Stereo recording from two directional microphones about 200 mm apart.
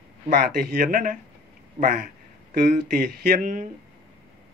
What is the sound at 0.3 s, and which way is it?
Speech, 45° right (ahead or behind).